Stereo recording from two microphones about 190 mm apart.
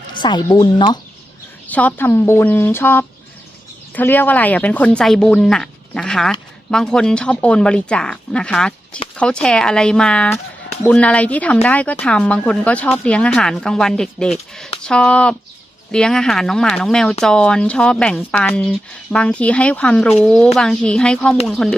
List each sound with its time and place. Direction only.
0.1 s speech: 25° left (ahead or behind)
1.6 s speech: 10° left (ahead or behind)